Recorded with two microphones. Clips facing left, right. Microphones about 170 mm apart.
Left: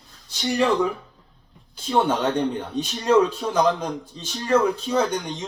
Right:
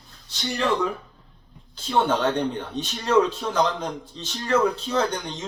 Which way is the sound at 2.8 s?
10° left (ahead or behind).